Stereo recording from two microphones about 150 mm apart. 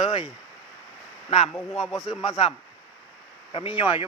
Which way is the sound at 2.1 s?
35° left (ahead or behind).